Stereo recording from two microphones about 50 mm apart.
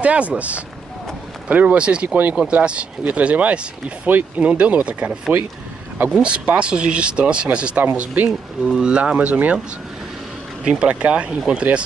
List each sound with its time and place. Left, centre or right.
0.0 s speech: right
2.0 s speech: right
2.5 s speech: right
6.2 s speech: right
7.8 s speech: right
8.3 s speech: centre; by 9.6 s right
10.6 s speech: centre